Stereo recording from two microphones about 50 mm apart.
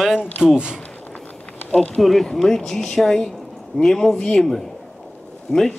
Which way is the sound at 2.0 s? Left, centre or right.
Centre.